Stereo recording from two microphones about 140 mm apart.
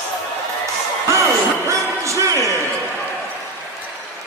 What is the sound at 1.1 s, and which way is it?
Music, 20° right (ahead or behind).